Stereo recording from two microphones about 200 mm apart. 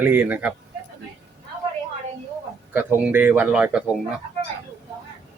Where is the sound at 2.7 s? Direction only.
10° right (ahead or behind).